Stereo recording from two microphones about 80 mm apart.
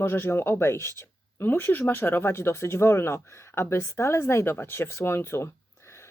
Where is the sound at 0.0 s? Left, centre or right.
Left.